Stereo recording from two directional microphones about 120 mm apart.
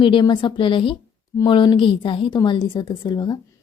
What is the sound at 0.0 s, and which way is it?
A woman's voice, 40° left (ahead or behind).